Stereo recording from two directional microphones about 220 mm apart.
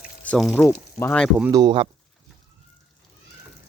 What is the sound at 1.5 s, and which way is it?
Speech, 20° right (ahead or behind).